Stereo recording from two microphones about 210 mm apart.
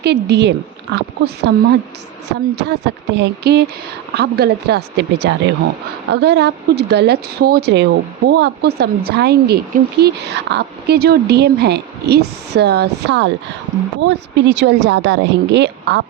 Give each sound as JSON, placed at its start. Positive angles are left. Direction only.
{"t": 0.0, "sound": "a woman's voice", "side_deg": -50}